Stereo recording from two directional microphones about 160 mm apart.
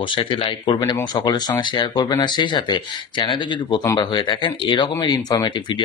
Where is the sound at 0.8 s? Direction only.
15° left (ahead or behind).